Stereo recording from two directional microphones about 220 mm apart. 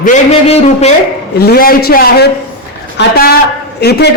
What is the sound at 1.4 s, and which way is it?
A man's voice, 45° left (ahead or behind).